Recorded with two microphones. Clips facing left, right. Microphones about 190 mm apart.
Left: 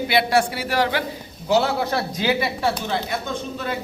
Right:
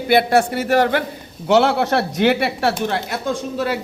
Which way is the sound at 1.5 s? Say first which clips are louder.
Right 5 dB; 75° right (ahead or behind).